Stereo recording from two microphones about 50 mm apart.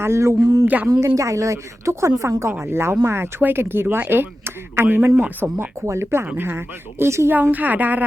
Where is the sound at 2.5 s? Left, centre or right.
Right.